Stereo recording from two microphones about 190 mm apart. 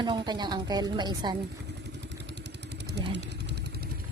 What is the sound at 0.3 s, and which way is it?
A woman's voice, 20° right (ahead or behind).